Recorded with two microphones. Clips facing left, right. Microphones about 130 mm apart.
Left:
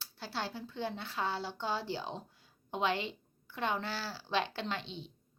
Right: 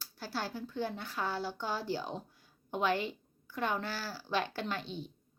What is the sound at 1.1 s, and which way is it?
Speech, 25° left (ahead or behind).